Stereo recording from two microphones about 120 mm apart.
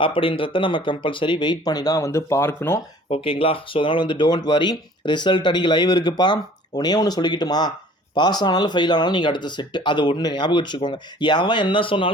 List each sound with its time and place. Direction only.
0.0 s speech: 45° left (ahead or behind); by 2.8 s 20° left (ahead or behind)
3.1 s speech: 50° left (ahead or behind)